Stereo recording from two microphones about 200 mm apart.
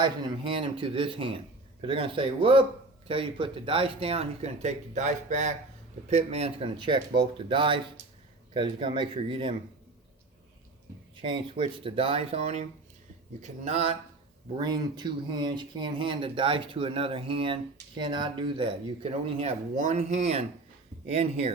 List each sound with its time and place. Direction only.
0.0 s speech: 25° right (ahead or behind)
11.2 s speech: 25° right (ahead or behind)
14.6 s speech: 20° right (ahead or behind)